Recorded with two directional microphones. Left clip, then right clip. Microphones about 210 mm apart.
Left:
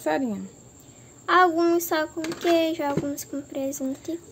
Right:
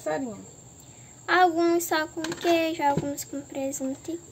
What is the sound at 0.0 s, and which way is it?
Speech, 45° left (ahead or behind).